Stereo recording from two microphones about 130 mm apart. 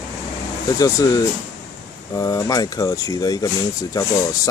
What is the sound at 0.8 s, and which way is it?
Speech, 25° left (ahead or behind).